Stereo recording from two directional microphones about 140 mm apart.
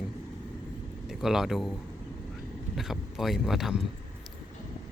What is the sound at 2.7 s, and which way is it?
Speech, centre (ahead or behind).